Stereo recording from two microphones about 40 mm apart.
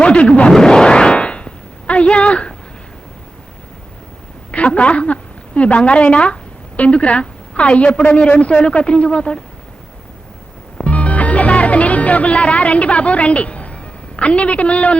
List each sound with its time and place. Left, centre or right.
0.0 s speech: left
0.5 s a sound: centre
4.5 s a woman's voice: left
10.8 s music: left
14.2 s a woman's voice: left